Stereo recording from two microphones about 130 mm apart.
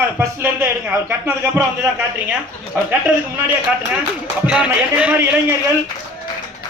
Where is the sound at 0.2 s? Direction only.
15° right (ahead or behind).